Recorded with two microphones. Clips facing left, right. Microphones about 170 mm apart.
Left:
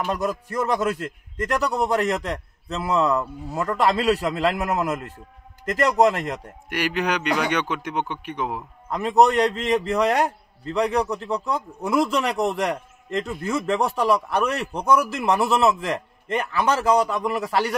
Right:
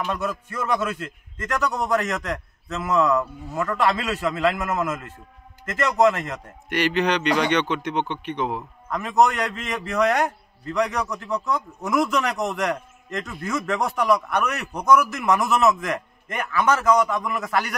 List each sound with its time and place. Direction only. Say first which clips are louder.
0.0 s a man's voice: left 2 dB; 35° left (ahead or behind)
6.7 s a man's voice: right 2 dB; 10° left (ahead or behind)
8.8 s a man's voice: left 2 dB; 30° left (ahead or behind)